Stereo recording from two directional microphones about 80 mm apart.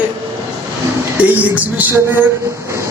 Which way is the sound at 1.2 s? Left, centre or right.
Centre.